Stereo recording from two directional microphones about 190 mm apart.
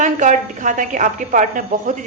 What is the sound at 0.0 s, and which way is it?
A woman's voice, 40° right (ahead or behind).